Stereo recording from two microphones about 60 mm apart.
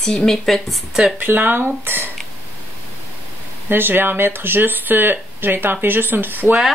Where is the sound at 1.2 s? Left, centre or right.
Right.